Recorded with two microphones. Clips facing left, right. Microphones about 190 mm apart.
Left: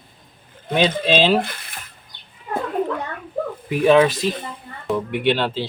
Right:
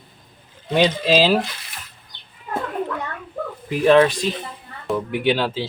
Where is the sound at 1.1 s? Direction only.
5° right (ahead or behind).